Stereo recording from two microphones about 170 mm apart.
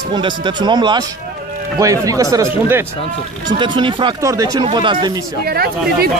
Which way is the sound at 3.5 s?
30° right (ahead or behind).